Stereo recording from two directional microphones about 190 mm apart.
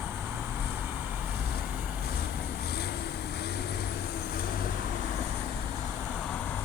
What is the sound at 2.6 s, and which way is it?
Vehicle, 55° left (ahead or behind).